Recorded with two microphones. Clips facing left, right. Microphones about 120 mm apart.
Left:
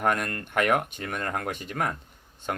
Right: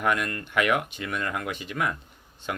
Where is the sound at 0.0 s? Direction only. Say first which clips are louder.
Even; 45° left (ahead or behind).